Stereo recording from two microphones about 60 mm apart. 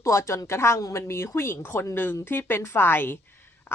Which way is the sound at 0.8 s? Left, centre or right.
Left.